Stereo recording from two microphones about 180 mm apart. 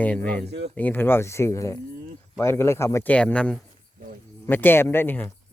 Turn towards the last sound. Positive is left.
turn(degrees=10)  # may be behind; listen again after turning